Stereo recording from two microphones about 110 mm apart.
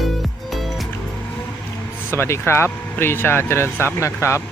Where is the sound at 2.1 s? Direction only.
25° left (ahead or behind).